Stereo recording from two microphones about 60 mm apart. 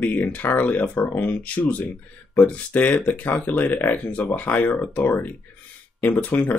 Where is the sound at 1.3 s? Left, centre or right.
Left.